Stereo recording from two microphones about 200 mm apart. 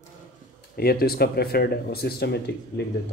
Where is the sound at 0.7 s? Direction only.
50° left (ahead or behind).